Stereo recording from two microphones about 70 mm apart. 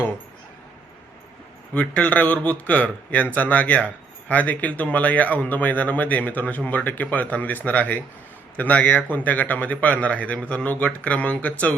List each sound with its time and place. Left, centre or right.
1.7 s speech: centre